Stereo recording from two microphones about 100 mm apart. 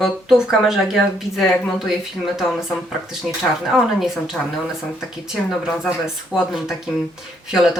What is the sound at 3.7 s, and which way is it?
Speech, 5° right (ahead or behind).